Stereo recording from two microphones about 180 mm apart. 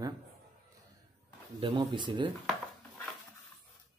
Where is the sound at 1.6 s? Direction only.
30° right (ahead or behind).